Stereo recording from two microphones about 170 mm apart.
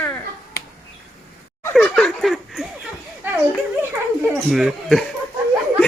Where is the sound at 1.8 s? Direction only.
5° left (ahead or behind).